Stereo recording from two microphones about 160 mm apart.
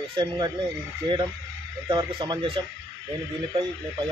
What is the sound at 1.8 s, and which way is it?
Speech, 30° right (ahead or behind).